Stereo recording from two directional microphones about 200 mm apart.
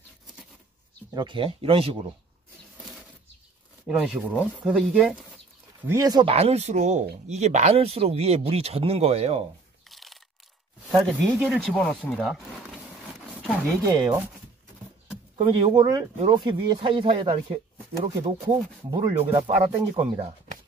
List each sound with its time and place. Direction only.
1.1 s speech: 25° right (ahead or behind)
3.8 s speech: 5° right (ahead or behind)
5.9 s speech: 15° right (ahead or behind)
9.8 s crunch: centre (ahead or behind)
10.9 s speech: centre (ahead or behind)
13.8 s speech: 20° right (ahead or behind)
15.3 s speech: 30° right (ahead or behind)